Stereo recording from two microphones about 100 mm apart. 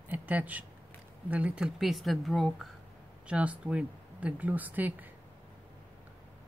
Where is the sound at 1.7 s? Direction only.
Centre (ahead or behind).